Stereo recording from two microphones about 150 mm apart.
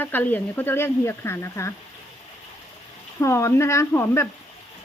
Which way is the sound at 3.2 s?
20° left (ahead or behind).